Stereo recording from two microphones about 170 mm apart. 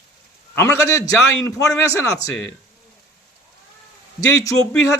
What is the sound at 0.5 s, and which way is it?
A man's voice, 15° left (ahead or behind).